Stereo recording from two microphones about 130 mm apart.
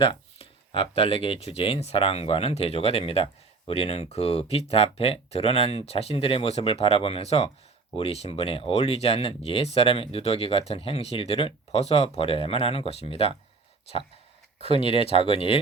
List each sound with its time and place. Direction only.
0.0 s speech: 40° left (ahead or behind)
14.8 s speech: 45° left (ahead or behind)